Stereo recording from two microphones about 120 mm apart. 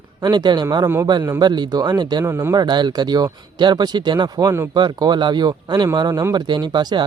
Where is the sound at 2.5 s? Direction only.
40° right (ahead or behind).